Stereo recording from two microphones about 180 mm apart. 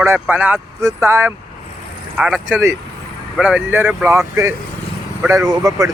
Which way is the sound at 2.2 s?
5° right (ahead or behind).